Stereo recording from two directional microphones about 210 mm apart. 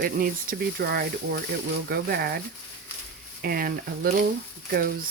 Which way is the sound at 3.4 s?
45° right (ahead or behind).